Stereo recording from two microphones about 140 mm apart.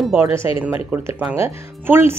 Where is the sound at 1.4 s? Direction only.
15° right (ahead or behind).